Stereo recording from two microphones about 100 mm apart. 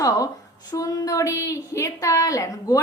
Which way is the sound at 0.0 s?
35° left (ahead or behind).